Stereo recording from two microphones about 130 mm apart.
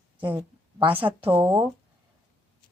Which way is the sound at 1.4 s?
35° right (ahead or behind).